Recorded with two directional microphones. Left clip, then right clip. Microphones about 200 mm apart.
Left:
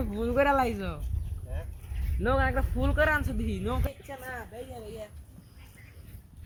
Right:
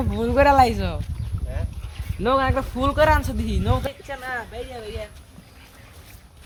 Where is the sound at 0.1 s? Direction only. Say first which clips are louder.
Right 8 dB; 50° right (ahead or behind).